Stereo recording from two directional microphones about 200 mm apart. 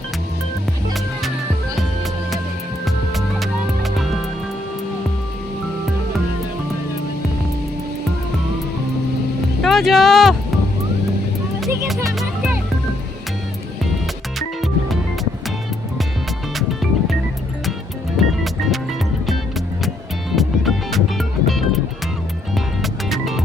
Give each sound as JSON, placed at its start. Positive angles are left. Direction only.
{"t": 2.8, "sound": "music", "side_deg": 0}
{"t": 9.6, "sound": "a sound", "side_deg": 0}
{"t": 14.3, "sound": "music", "side_deg": 0}
{"t": 16.6, "sound": "music", "side_deg": 0}
{"t": 18.2, "sound": "music", "side_deg": 0}